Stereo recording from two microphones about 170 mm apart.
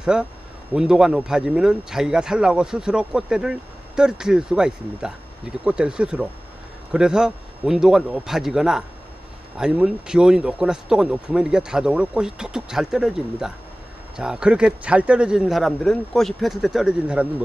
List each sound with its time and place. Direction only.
0.0 s speech: 5° right (ahead or behind)